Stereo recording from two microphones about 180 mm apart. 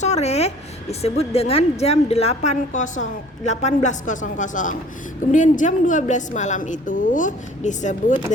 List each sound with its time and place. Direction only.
0.0 s a woman's voice: 40° left (ahead or behind)